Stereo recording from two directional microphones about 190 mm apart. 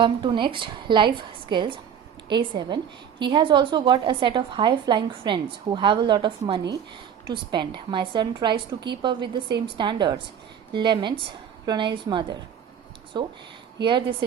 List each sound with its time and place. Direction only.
0.0 s a woman's voice: 25° right (ahead or behind)